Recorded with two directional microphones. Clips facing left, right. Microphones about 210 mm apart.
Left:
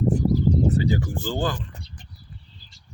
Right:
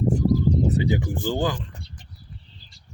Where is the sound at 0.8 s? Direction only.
20° right (ahead or behind).